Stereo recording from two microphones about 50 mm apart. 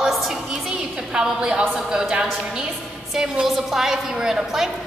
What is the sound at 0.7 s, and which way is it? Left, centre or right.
A woman's voice, centre.